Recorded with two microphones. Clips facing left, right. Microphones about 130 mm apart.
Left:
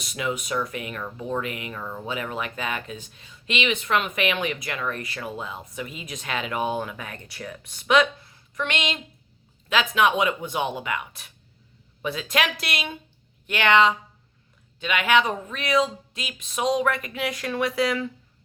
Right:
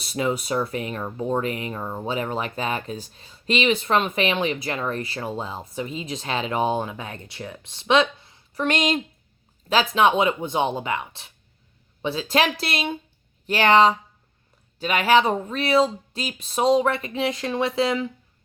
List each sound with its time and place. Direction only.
0.0 s speech: 35° right (ahead or behind)
8.6 s speech: 40° right (ahead or behind); by 18.1 s 25° right (ahead or behind)